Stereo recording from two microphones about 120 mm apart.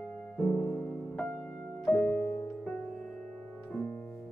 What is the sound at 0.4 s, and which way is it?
Music, 10° left (ahead or behind).